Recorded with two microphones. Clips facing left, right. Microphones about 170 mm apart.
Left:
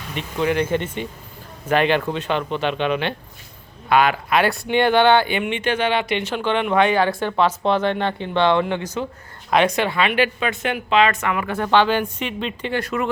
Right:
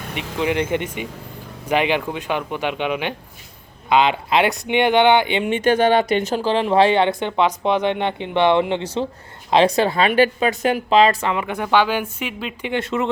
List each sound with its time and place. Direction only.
0.2 s speech: 20° right (ahead or behind)
5.5 s a woman's voice: 40° right (ahead or behind); by 12.7 s 5° right (ahead or behind)
12.7 s speech: 25° right (ahead or behind)